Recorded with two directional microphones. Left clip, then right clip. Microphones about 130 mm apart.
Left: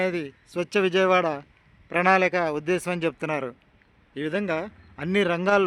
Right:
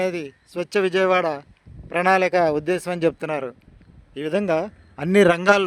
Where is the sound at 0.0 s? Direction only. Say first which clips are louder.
Right 2 dB; 25° right (ahead or behind).